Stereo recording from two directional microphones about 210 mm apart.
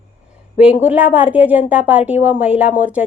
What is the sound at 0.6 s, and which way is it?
A woman's voice, 5° right (ahead or behind).